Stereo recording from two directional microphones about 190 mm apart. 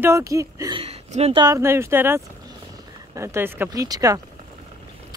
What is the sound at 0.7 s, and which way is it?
Speech, 35° right (ahead or behind).